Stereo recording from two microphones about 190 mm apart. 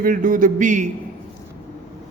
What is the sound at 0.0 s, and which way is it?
Speech, 45° right (ahead or behind).